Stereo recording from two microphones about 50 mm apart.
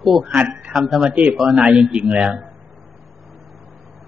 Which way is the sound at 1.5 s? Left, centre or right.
Centre.